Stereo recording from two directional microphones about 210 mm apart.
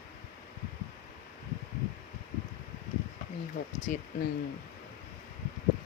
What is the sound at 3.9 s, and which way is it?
Speech, 40° left (ahead or behind).